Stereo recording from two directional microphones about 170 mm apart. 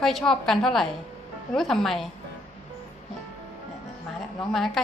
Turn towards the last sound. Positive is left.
turn(degrees=0)  # may be behind; listen again after turning